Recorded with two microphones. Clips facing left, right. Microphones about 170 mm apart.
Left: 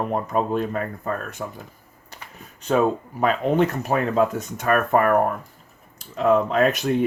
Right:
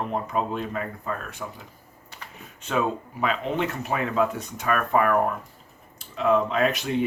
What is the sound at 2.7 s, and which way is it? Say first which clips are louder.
Speech: left 6 dB; 40° left (ahead or behind).